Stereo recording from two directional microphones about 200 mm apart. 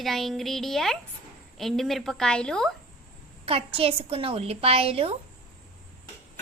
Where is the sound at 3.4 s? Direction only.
30° right (ahead or behind).